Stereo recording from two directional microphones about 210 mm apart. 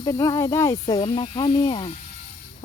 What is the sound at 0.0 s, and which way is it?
Speech, 15° left (ahead or behind).